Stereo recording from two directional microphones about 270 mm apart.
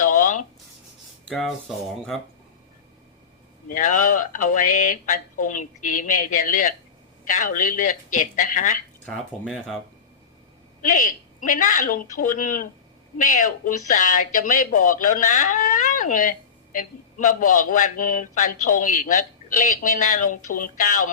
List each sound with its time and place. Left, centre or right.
0.0 s writing: left
1.2 s speech: centre
3.7 s speech: left
9.0 s speech: centre
10.9 s speech: left